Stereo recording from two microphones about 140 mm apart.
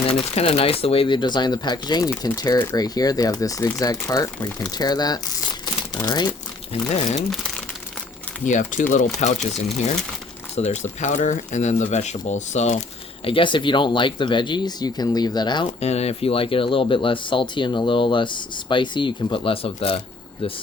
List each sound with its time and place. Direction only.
0.3 s speech: 45° left (ahead or behind)
6.9 s speech: 55° left (ahead or behind)
8.4 s speech: 65° left (ahead or behind)
10.5 s speech: 55° left (ahead or behind)
13.2 s speech: 40° left (ahead or behind)
15.8 s speech: 50° left (ahead or behind)